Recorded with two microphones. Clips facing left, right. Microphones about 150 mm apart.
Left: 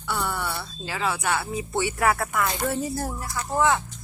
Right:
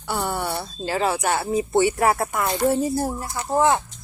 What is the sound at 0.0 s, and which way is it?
Speech, 35° right (ahead or behind).